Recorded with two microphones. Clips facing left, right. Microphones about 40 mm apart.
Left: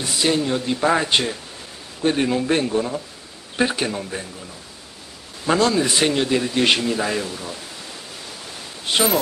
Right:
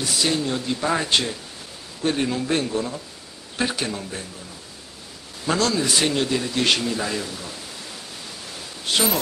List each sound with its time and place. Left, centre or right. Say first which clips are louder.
0.0 s speech: left 2 dB; centre
5.5 s a man's voice: left 3 dB; centre
8.8 s speech: left 3 dB; centre